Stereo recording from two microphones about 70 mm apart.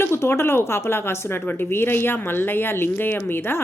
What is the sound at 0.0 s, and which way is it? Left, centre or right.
Speech, left.